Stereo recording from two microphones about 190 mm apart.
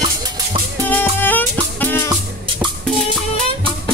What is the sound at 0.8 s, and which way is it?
Music, 10° left (ahead or behind).